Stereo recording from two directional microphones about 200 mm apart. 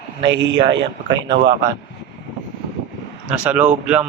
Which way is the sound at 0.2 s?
60° right (ahead or behind).